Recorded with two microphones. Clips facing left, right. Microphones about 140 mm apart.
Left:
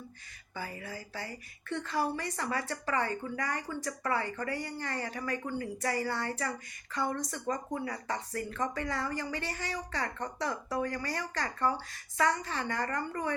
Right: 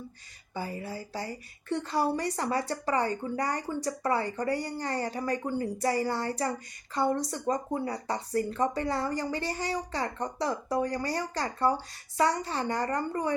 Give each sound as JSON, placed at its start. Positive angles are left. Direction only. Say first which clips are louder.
{"t": 0.5, "sound": "speech", "louder": "right 5 dB", "side_deg": -30}